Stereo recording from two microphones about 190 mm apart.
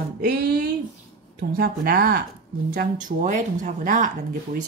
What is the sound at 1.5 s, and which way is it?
Speech, 55° right (ahead or behind).